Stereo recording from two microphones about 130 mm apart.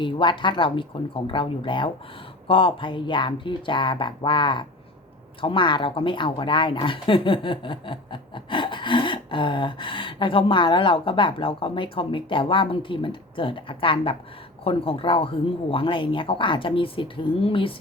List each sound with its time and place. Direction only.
0.0 s speech: 40° left (ahead or behind)